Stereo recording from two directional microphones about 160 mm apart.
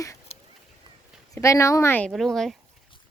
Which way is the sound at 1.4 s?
20° left (ahead or behind).